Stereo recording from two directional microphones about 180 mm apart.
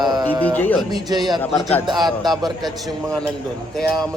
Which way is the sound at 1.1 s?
20° right (ahead or behind).